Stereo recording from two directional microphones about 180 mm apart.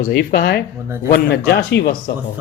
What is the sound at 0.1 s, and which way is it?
Speech, 60° left (ahead or behind).